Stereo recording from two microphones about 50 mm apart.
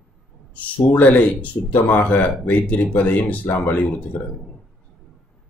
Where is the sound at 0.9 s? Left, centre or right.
Left.